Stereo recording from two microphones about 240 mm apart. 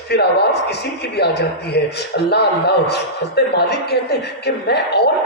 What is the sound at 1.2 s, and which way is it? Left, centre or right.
A man's voice, left.